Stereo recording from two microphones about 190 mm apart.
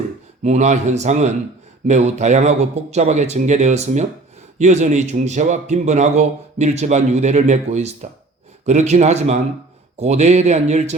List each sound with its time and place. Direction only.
0.4 s speech: 35° right (ahead or behind)